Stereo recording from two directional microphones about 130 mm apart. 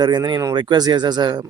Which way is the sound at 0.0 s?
35° right (ahead or behind).